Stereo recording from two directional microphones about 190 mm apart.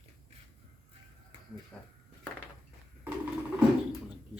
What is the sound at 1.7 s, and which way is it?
Speech, 10° left (ahead or behind).